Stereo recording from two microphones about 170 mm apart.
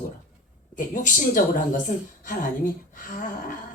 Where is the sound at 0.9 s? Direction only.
50° left (ahead or behind).